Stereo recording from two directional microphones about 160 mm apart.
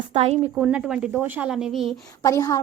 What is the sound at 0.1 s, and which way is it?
Speech, 40° right (ahead or behind).